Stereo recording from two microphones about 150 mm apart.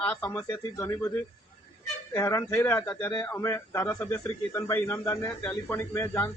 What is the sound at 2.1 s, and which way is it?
A man's voice, 20° left (ahead or behind).